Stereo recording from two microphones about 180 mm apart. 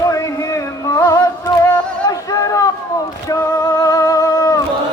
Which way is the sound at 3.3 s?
20° left (ahead or behind).